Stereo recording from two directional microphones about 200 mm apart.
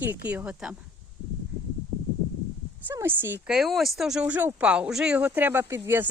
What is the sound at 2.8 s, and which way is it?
Speech, 10° right (ahead or behind).